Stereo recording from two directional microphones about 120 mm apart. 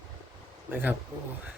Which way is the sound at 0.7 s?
15° right (ahead or behind).